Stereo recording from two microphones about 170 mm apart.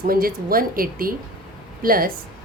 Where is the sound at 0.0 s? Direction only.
60° right (ahead or behind).